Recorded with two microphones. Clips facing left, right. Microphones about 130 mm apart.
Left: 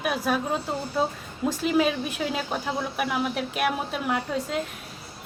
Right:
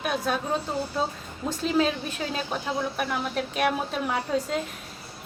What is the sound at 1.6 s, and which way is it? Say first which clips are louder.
A woman's voice: even; 10° left (ahead or behind).